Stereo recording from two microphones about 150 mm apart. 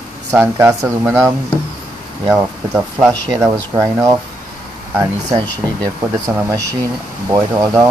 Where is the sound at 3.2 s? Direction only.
20° right (ahead or behind).